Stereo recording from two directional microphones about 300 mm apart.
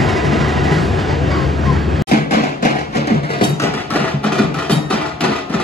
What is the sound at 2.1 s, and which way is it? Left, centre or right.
Music, left.